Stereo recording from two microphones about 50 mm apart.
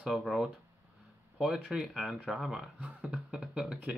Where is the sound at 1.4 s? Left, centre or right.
Centre.